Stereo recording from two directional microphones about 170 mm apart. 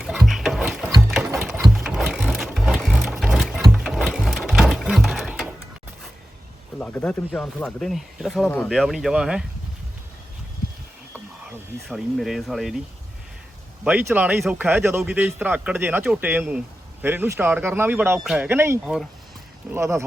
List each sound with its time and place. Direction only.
0.0 s music: centre (ahead or behind)
1.6 s sewing machine: 5° right (ahead or behind)
6.7 s speech: 10° left (ahead or behind)
11.9 s speech: centre (ahead or behind)
13.8 s speech: 10° right (ahead or behind)